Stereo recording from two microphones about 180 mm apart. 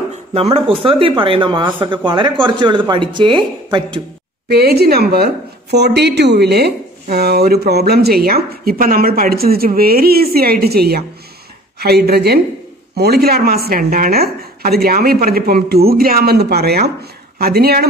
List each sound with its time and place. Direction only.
0.3 s speech: 35° right (ahead or behind)
4.5 s a woman's voice: 60° right (ahead or behind)